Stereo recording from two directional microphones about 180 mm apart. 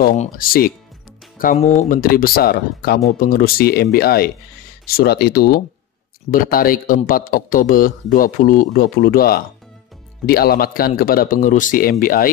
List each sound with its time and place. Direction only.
0.2 s speech: 55° left (ahead or behind)
1.6 s speech: 40° left (ahead or behind)